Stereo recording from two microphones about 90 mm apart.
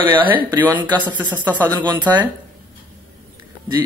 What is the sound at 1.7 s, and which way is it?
Speech, 55° right (ahead or behind).